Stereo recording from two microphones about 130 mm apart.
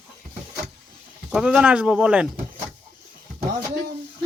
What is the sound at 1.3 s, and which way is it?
Speech, 5° right (ahead or behind).